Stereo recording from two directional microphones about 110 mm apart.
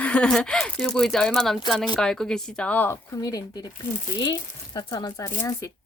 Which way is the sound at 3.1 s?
35° left (ahead or behind).